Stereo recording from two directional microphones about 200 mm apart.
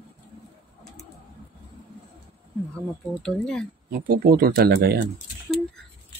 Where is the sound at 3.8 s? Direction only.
50° right (ahead or behind).